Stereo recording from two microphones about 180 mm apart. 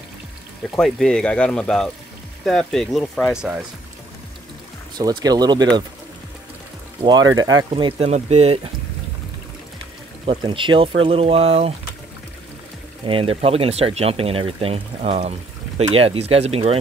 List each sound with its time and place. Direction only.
0.7 s speech: centre (ahead or behind)
3.3 s speech: 5° right (ahead or behind)
4.9 s speech: 20° right (ahead or behind)
7.0 s speech: 25° right (ahead or behind)
10.2 s speech: 30° right (ahead or behind)
13.0 s speech: 30° right (ahead or behind)